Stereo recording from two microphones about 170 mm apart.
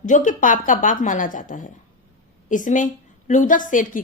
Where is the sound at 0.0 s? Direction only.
50° left (ahead or behind).